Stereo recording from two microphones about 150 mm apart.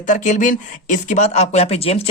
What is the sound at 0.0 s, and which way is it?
Speech, 60° left (ahead or behind).